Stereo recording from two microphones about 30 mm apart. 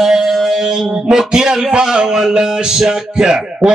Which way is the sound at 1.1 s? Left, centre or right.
Right.